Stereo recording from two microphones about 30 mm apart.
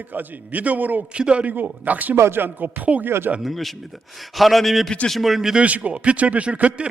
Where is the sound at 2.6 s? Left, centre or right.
Right.